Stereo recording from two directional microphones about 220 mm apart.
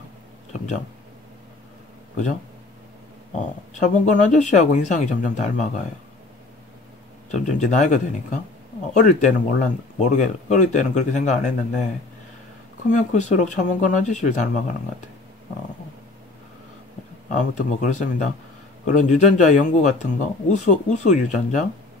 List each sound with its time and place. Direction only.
3.8 s speech: 35° left (ahead or behind)
7.2 s speech: 35° left (ahead or behind)
12.9 s speech: 35° left (ahead or behind)
17.3 s speech: 35° left (ahead or behind)